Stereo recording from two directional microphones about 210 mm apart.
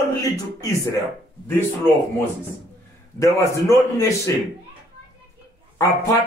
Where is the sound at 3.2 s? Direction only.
15° left (ahead or behind).